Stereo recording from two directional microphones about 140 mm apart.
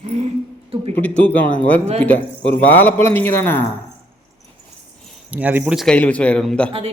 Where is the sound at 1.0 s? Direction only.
10° left (ahead or behind).